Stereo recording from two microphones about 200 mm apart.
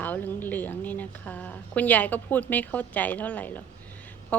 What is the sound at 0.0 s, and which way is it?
A woman's voice, 10° left (ahead or behind).